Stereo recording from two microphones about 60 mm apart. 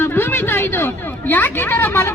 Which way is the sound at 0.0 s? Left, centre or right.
Left.